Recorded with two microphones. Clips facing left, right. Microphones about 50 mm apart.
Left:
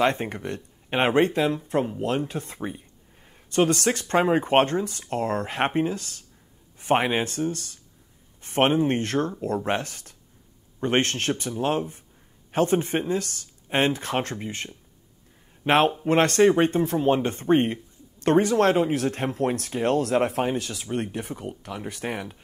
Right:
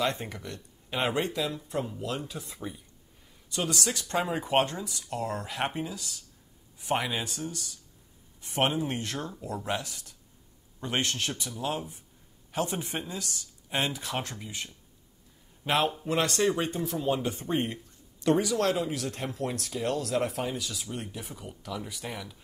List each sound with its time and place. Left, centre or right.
0.0 s speech: left